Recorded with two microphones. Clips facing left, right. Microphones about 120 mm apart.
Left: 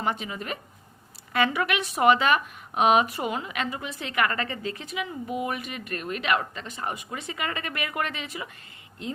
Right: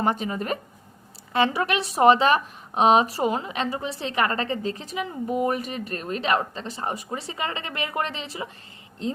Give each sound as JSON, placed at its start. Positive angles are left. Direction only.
{"t": 0.0, "sound": "a woman's voice", "side_deg": -40}